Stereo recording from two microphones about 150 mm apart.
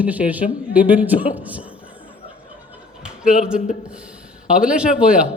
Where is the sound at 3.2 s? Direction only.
5° right (ahead or behind).